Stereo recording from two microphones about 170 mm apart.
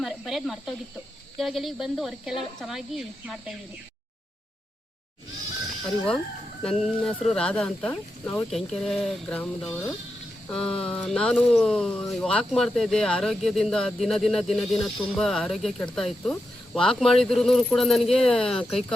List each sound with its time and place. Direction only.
0.0 s speech: centre (ahead or behind)
6.6 s speech: centre (ahead or behind)